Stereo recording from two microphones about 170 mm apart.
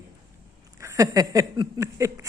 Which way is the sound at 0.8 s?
20° right (ahead or behind).